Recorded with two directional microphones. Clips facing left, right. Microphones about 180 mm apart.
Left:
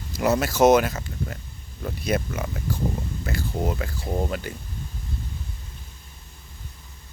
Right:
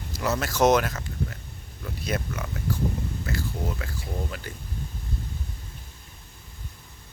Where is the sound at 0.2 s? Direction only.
10° left (ahead or behind).